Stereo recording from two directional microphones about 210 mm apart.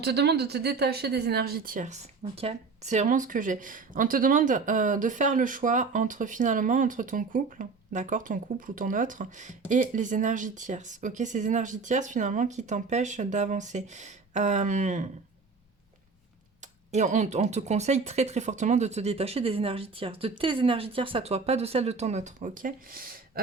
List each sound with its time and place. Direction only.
0.0 s speech: 50° right (ahead or behind)
16.6 s speech: 35° right (ahead or behind)